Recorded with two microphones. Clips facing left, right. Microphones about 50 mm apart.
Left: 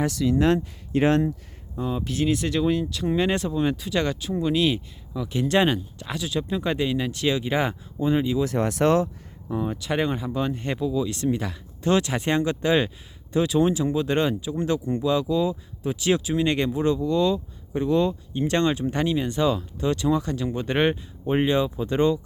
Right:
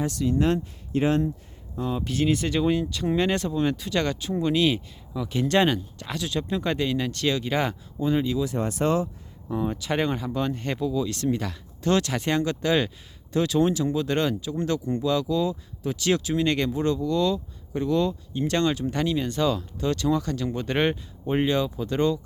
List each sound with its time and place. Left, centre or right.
0.0 s speech: left
1.7 s speech: centre
8.5 s speech: left
9.5 s speech: centre